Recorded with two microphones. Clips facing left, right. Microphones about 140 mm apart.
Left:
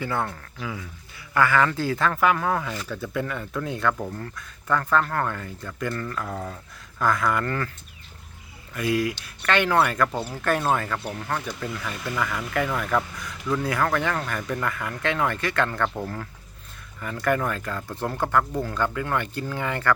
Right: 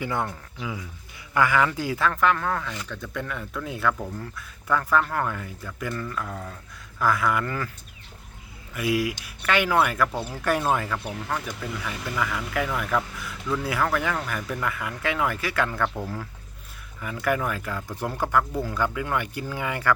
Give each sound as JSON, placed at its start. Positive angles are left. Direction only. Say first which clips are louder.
{"t": 0.0, "sound": "speech", "louder": "left 1 dB", "side_deg": -15}
{"t": 2.0, "sound": "speech", "louder": "even", "side_deg": 5}
{"t": 8.7, "sound": "speech", "louder": "left 1 dB", "side_deg": -10}
{"t": 17.0, "sound": "speech", "louder": "left 1 dB", "side_deg": -10}